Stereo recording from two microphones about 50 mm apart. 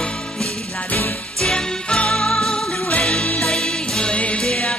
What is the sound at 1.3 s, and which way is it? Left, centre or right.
Music, centre.